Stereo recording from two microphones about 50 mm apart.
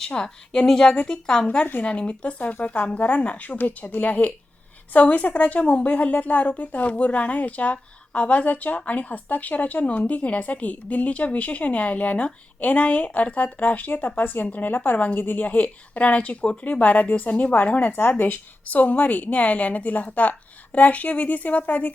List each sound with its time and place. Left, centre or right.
0.0 s a woman's voice: centre